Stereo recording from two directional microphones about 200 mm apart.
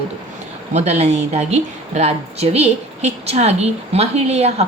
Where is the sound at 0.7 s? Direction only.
35° right (ahead or behind).